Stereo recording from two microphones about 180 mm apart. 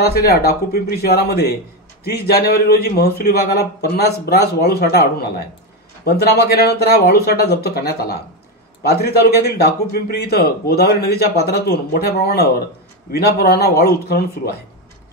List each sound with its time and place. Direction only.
0.0 s a man's voice: 60° left (ahead or behind)
6.0 s a man's voice: 65° left (ahead or behind)